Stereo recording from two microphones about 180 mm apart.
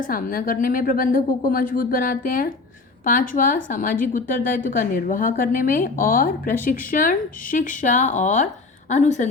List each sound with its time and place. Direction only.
0.0 s a woman's voice: 50° left (ahead or behind)